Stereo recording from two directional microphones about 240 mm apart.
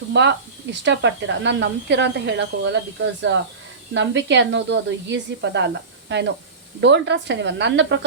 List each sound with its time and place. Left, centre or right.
0.1 s speech: right